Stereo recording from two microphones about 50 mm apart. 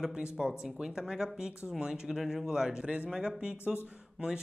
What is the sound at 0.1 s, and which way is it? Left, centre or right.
A man's voice, centre.